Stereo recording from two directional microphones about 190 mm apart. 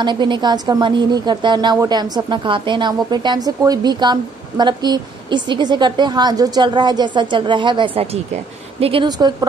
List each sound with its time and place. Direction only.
0.0 s a woman's voice: 25° right (ahead or behind)